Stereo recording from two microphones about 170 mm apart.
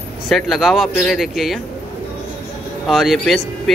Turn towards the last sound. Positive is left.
turn(degrees=0)  # may be behind; listen again after turning